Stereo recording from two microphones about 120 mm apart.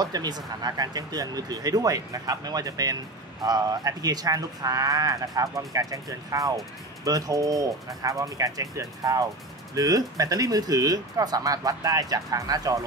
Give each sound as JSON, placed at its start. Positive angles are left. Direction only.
{"t": 0.0, "sound": "speech", "side_deg": -35}